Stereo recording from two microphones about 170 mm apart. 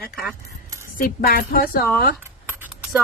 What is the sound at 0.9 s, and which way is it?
Speech, 60° left (ahead or behind).